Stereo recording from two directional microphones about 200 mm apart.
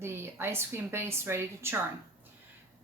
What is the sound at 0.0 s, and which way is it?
Speech, 10° right (ahead or behind).